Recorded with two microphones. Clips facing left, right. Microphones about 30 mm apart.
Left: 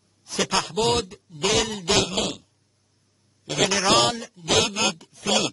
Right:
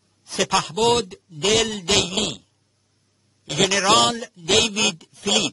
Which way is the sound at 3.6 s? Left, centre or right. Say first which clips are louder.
Right 3 dB; centre.